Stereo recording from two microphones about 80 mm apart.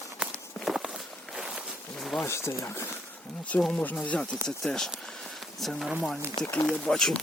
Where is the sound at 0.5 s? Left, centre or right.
Centre.